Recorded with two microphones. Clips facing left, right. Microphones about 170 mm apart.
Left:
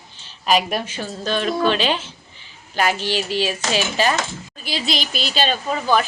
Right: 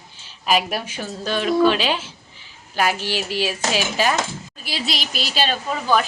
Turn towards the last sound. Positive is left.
turn(degrees=0)  # may be behind; listen again after turning